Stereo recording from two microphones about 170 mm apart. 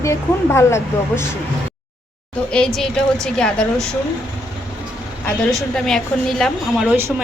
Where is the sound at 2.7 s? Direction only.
5° left (ahead or behind).